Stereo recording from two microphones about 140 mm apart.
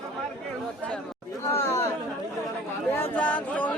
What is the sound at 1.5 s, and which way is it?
Chatter, 20° left (ahead or behind).